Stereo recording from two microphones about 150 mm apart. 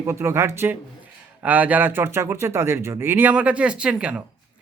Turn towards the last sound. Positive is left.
turn(degrees=-5)  # may be behind; listen again after turning